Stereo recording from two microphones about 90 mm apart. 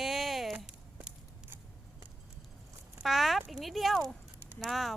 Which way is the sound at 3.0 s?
Centre (ahead or behind).